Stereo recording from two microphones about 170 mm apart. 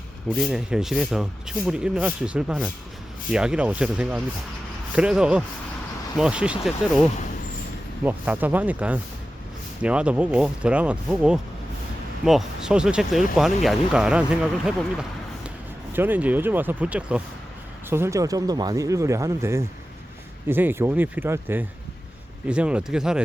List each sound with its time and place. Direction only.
0.3 s speech: centre (ahead or behind)
15.9 s speech: 10° right (ahead or behind)